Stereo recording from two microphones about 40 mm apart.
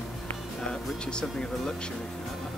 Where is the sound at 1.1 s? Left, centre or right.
Left.